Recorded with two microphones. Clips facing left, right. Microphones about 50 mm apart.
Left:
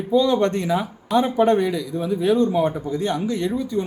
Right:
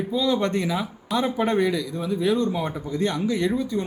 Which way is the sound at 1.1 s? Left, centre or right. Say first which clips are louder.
Left 6 dB; centre.